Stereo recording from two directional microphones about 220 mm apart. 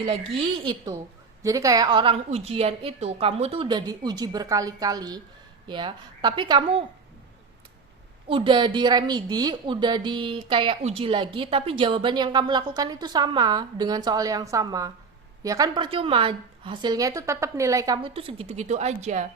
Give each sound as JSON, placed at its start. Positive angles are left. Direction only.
{"t": 0.0, "sound": "a woman's voice", "side_deg": -20}
{"t": 8.3, "sound": "a woman's voice", "side_deg": -25}